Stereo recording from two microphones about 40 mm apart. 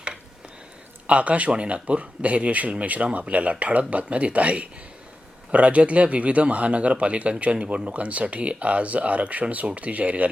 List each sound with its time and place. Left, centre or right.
1.0 s speech: right